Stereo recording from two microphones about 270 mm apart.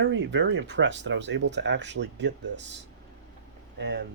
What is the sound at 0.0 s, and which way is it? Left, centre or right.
A man's voice, right.